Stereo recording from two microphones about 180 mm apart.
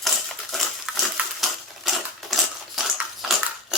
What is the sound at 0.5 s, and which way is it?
Crushing, centre (ahead or behind).